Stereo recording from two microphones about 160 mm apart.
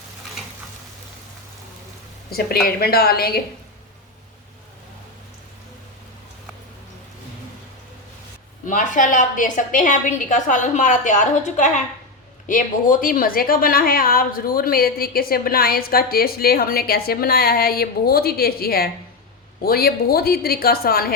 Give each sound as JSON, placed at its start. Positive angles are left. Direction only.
{"t": 2.6, "sound": "a woman's voice", "side_deg": 75}
{"t": 8.6, "sound": "a woman's voice", "side_deg": 55}